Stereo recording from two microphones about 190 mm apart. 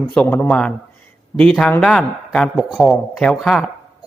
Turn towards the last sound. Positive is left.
turn(degrees=0)  # may be behind; listen again after turning